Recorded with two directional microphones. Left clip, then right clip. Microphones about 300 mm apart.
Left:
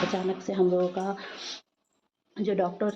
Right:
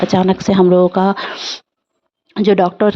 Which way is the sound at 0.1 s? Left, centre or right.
Right.